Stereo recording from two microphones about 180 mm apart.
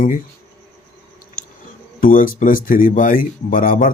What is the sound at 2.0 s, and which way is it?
Speech, 50° left (ahead or behind).